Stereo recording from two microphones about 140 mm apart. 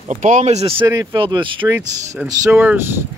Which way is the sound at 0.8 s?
25° right (ahead or behind).